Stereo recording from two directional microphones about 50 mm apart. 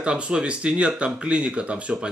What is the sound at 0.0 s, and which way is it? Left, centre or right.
Speech, right.